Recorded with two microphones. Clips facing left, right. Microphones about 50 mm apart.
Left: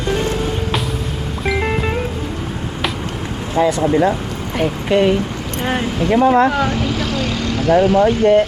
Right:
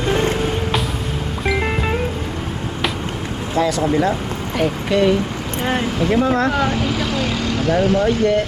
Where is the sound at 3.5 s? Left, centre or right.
Left.